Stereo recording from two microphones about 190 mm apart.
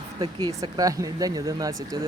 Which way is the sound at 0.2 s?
25° right (ahead or behind).